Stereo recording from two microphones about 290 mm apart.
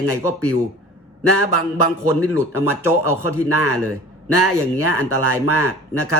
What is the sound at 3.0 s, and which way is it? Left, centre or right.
A man's voice, right.